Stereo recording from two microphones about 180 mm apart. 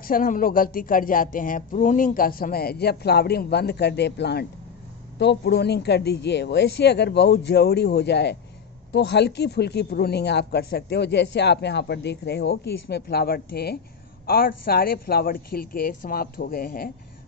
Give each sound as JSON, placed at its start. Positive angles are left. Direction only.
{"t": 0.1, "sound": "speech", "side_deg": 50}